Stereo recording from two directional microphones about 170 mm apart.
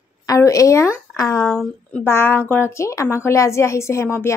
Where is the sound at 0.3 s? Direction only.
20° left (ahead or behind).